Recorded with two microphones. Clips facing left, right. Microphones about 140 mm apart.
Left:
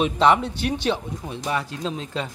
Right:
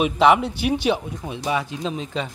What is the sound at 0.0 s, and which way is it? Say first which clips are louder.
Speech: right 2 dB; 10° right (ahead or behind).